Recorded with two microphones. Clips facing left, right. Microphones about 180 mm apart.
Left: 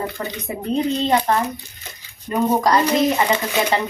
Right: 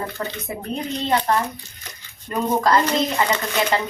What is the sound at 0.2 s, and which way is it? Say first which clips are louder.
Speech: left 1 dB; 15° left (ahead or behind).